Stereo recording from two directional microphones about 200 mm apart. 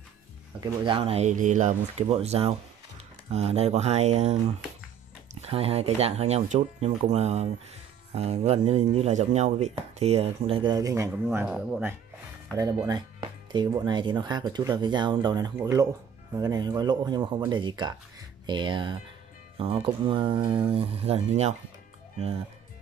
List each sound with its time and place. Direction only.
0.8 s speech: 25° right (ahead or behind)
11.2 s speech: 5° right (ahead or behind)
12.5 s speech: 15° right (ahead or behind); by 21.5 s 35° right (ahead or behind)